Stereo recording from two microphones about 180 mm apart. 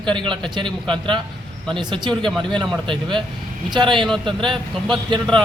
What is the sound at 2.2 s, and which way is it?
Speech, 5° left (ahead or behind).